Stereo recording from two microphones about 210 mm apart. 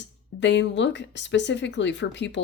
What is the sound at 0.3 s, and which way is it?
Speech, 55° left (ahead or behind).